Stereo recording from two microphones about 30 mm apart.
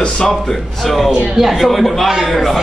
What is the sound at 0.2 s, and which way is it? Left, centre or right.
Speech, centre.